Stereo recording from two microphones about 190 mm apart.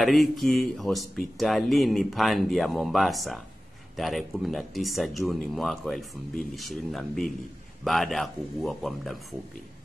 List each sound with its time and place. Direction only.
0.0 s speech: centre (ahead or behind)